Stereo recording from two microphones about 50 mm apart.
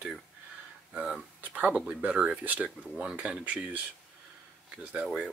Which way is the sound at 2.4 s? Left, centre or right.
Right.